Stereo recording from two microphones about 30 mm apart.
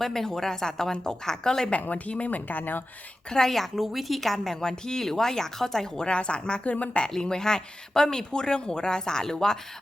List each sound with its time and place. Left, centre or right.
0.0 s speech: centre
2.0 s speech: left
2.5 s speech: left
3.2 s speech: left
3.5 s a woman's voice: centre
4.6 s speech: left
6.0 s a woman's voice: left
6.7 s speech: left
7.2 s speech: left